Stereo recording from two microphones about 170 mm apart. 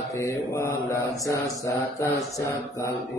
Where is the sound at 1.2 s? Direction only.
20° left (ahead or behind).